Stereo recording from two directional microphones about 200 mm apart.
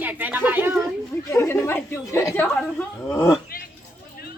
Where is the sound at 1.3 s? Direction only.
15° left (ahead or behind).